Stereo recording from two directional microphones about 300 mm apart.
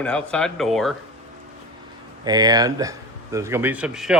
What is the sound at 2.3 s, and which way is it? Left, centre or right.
Speech, centre.